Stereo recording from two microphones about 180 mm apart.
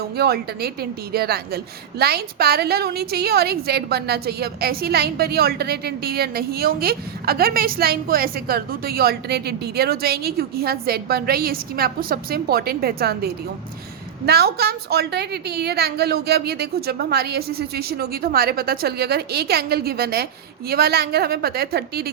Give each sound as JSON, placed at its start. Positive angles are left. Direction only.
{"t": 0.2, "sound": "a woman's voice", "side_deg": -60}